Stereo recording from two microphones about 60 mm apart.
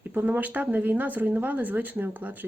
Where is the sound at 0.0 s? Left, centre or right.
Right.